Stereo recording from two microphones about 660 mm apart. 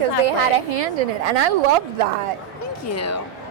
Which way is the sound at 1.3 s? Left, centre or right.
Right.